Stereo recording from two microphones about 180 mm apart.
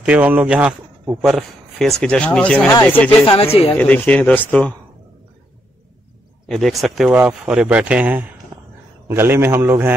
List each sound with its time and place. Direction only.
0.0 s a man's voice: 5° right (ahead or behind); by 3.3 s 10° left (ahead or behind)
3.3 s speech: 30° left (ahead or behind)
3.7 s speech: 10° left (ahead or behind)
6.4 s a man's voice: centre (ahead or behind)